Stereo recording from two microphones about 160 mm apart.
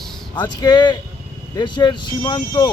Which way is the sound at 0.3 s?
25° left (ahead or behind).